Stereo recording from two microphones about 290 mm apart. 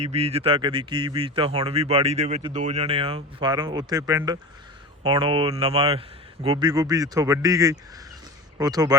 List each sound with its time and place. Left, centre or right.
0.0 s a man's voice: right